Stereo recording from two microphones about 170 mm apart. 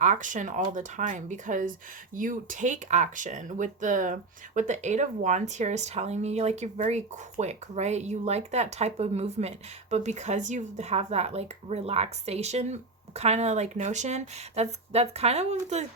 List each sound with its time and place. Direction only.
0.0 s speech: 45° right (ahead or behind)